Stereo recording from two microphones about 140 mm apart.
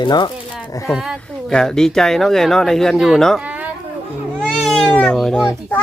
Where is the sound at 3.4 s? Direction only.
10° right (ahead or behind).